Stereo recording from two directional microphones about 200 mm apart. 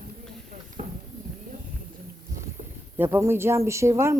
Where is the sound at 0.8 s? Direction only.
35° right (ahead or behind).